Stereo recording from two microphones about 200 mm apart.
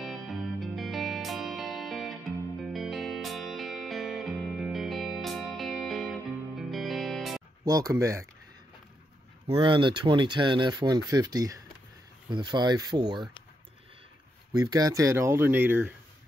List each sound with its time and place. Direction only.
0.0 s music: centre (ahead or behind)
7.6 s speech: 15° right (ahead or behind)
9.5 s speech: 25° right (ahead or behind)
14.5 s speech: 20° right (ahead or behind)